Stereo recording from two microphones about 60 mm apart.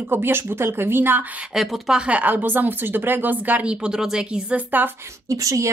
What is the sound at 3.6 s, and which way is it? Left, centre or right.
Speech, centre.